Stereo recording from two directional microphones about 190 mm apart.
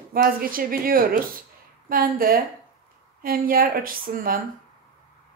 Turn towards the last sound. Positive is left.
turn(degrees=-50)  # may be behind; listen again after turning